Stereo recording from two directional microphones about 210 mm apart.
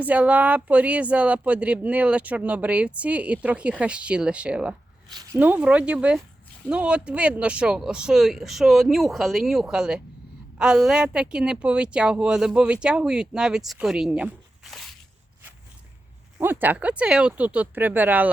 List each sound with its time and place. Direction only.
0.0 s speech: 5° right (ahead or behind)
5.0 s a sound: 20° right (ahead or behind)
5.4 s speech: 5° right (ahead or behind)
16.4 s speech: 10° right (ahead or behind)